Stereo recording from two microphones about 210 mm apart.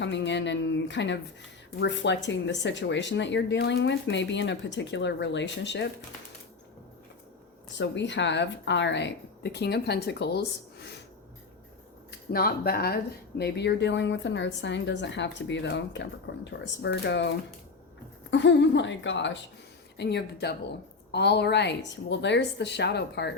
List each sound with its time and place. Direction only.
0.0 s speech: 60° left (ahead or behind)
7.8 s speech: 60° left (ahead or behind)
12.3 s a woman's voice: 45° left (ahead or behind)